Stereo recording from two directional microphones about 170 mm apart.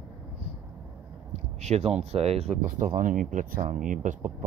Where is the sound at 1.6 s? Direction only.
40° right (ahead or behind).